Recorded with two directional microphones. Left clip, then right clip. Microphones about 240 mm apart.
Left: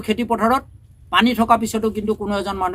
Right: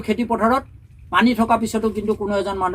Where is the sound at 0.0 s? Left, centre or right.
Left.